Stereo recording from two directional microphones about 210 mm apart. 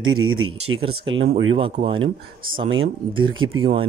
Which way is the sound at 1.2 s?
25° right (ahead or behind).